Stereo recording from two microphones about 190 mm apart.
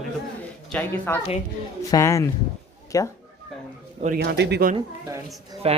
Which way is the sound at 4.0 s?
50° right (ahead or behind).